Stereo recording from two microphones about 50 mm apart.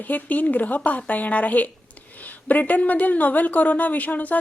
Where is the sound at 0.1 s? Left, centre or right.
Left.